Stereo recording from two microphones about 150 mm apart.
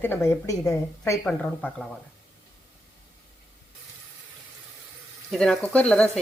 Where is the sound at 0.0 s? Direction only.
15° left (ahead or behind).